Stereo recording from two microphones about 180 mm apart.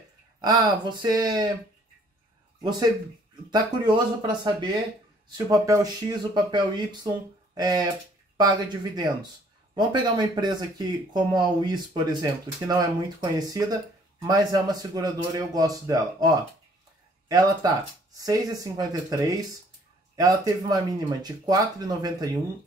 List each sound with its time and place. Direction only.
0.4 s speech: 25° right (ahead or behind)
3.4 s speech: 25° right (ahead or behind)